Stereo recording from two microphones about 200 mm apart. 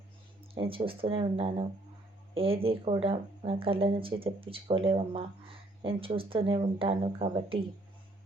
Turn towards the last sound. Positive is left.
turn(degrees=-25)  # may be behind; listen again after turning